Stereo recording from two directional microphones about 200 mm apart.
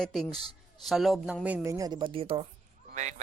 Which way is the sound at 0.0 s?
Centre (ahead or behind).